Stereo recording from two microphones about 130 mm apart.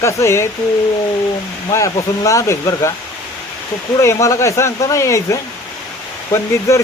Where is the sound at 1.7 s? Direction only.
25° left (ahead or behind).